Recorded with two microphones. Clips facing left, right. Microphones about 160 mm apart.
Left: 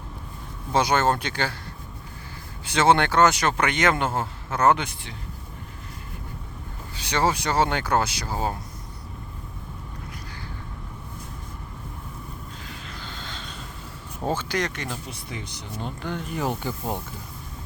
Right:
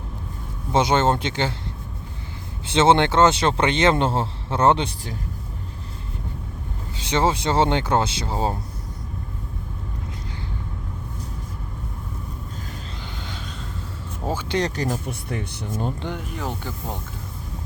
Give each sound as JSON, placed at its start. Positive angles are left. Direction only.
{"t": 0.7, "sound": "speech", "side_deg": -25}
{"t": 2.6, "sound": "speech", "side_deg": -25}
{"t": 6.9, "sound": "speech", "side_deg": -20}
{"t": 13.0, "sound": "a sound", "side_deg": -15}
{"t": 14.4, "sound": "speech", "side_deg": -30}
{"t": 16.4, "sound": "speech", "side_deg": 15}